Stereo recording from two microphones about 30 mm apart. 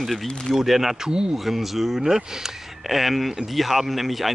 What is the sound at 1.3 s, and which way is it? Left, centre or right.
Speech, centre.